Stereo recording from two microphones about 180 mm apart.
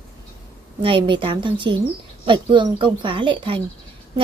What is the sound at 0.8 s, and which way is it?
Speech, 30° right (ahead or behind).